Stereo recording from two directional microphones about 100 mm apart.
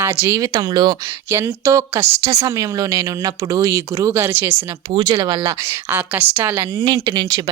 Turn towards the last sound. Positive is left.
turn(degrees=-45)  # may be behind; listen again after turning